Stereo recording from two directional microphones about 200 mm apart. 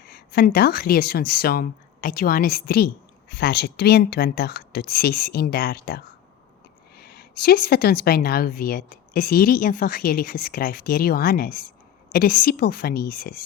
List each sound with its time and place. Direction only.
0.0 s speech: 50° left (ahead or behind)